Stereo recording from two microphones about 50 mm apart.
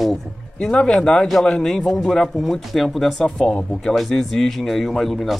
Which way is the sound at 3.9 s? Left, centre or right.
Centre.